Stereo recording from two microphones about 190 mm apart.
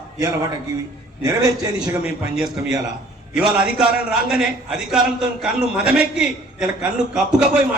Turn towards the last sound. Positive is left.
turn(degrees=-5)  # may be behind; listen again after turning